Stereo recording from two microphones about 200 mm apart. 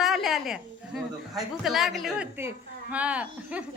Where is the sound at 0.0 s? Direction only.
Centre (ahead or behind).